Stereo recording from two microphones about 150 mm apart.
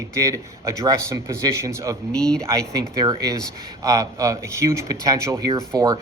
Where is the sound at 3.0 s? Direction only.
25° right (ahead or behind).